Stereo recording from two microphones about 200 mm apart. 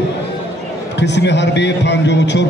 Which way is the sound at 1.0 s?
60° left (ahead or behind).